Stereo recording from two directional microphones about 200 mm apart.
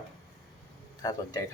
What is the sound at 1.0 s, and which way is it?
Speech, 20° left (ahead or behind).